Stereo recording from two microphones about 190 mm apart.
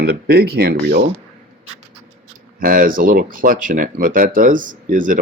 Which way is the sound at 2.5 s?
50° right (ahead or behind).